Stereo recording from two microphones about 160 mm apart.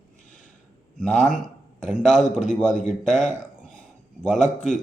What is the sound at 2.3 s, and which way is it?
A man's voice, 50° left (ahead or behind).